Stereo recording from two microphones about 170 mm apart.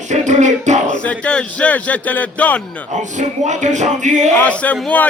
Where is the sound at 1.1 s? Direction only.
5° left (ahead or behind).